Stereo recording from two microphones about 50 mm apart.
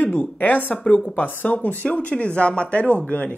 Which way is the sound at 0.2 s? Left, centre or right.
Left.